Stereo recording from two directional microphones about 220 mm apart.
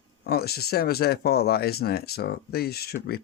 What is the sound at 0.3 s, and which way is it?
Speech, 45° left (ahead or behind).